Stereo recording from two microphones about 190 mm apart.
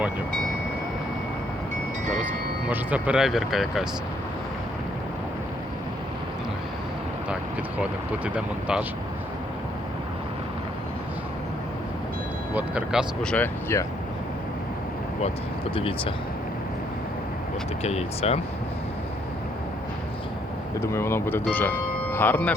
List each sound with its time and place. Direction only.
2.6 s speech: 5° right (ahead or behind)
7.8 s speech: 5° right (ahead or behind)
12.5 s speech: 5° right (ahead or behind)
13.3 s speech: 10° left (ahead or behind)
15.7 s speech: 30° left (ahead or behind)
17.8 s speech: 35° left (ahead or behind)
20.7 s speech: 15° left (ahead or behind)